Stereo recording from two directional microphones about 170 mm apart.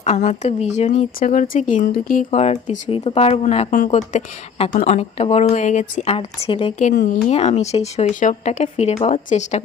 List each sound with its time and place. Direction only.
0.0 s speech: 40° left (ahead or behind)
2.3 s speech: 40° left (ahead or behind)